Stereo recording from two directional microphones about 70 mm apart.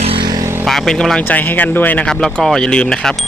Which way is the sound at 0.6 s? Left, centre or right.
Centre.